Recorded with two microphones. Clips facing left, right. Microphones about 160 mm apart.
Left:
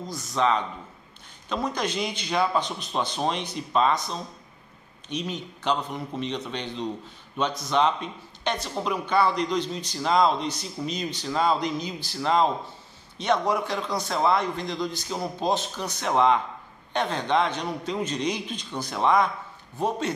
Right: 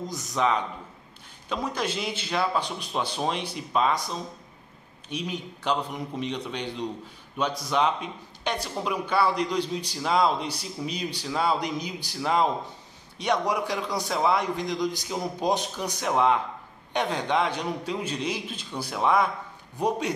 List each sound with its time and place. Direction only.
0.1 s a man's voice: 15° right (ahead or behind)
5.1 s a man's voice: 10° right (ahead or behind)